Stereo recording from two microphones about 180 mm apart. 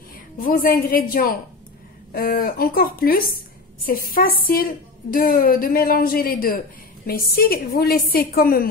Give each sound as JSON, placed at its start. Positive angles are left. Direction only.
{"t": 0.4, "sound": "a woman's voice", "side_deg": 50}